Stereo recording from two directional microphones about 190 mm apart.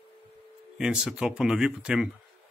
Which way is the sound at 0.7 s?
5° right (ahead or behind).